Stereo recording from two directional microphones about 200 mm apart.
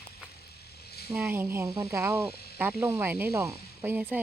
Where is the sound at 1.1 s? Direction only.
10° right (ahead or behind).